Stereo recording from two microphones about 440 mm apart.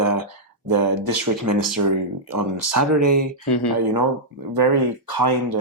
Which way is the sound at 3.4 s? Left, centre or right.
Left.